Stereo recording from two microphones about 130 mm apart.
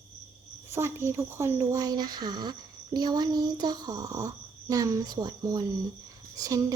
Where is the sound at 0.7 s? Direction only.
20° right (ahead or behind).